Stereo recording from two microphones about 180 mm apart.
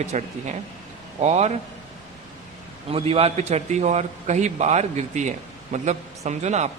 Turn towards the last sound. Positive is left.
turn(degrees=-40)  # may be behind; listen again after turning